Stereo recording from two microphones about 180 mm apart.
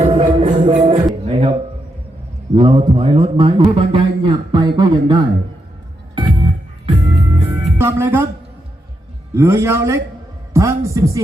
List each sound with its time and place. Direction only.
0.0 s music: 35° right (ahead or behind)
2.6 s a man's voice: 30° right (ahead or behind)
6.1 s music: 25° right (ahead or behind)
7.8 s speech: 15° right (ahead or behind)
9.3 s a man's voice: 15° right (ahead or behind)